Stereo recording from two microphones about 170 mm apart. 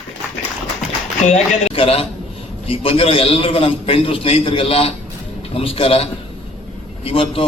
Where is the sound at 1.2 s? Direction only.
40° left (ahead or behind).